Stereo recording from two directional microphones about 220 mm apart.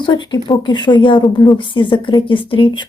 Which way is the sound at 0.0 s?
20° left (ahead or behind).